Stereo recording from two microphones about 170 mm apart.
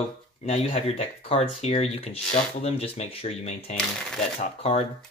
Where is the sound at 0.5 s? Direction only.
35° left (ahead or behind).